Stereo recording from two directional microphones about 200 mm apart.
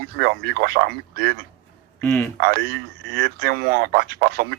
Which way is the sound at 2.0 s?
10° left (ahead or behind).